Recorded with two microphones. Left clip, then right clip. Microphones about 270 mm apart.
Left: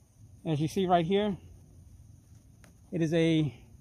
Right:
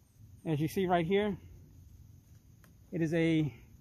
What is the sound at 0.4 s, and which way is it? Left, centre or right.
Speech, left.